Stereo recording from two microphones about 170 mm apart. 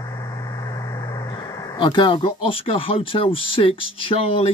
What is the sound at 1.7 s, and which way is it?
Speech, 25° left (ahead or behind).